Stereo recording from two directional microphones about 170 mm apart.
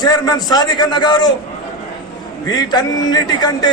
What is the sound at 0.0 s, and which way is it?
A man's voice, 20° left (ahead or behind).